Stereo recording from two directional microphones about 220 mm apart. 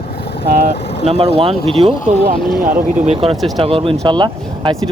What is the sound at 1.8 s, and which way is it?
Speech, 15° right (ahead or behind).